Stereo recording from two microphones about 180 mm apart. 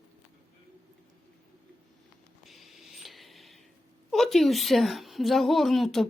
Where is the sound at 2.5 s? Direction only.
Centre (ahead or behind).